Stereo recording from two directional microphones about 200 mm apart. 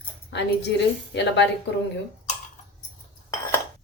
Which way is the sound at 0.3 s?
60° left (ahead or behind).